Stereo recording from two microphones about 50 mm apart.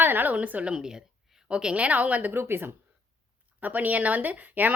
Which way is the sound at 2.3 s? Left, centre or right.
Right.